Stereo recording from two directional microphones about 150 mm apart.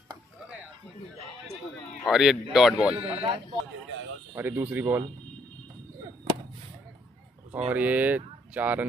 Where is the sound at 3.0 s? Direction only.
30° right (ahead or behind).